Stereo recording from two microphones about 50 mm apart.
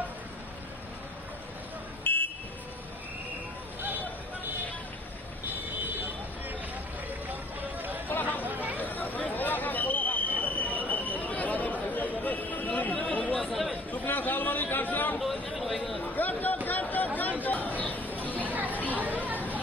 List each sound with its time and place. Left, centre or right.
2.1 s vehicle: left
8.5 s chatter: right
8.7 s a sound: left
16.0 s chatter: left
18.3 s a sound: right
18.9 s chatter: right